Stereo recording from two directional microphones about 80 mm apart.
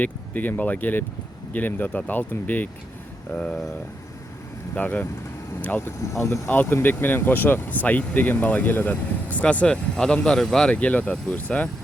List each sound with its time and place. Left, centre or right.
0.0 s speech: left
3.3 s speech: centre
4.7 s speech: left
6.1 s speech: left
6.5 s speech: left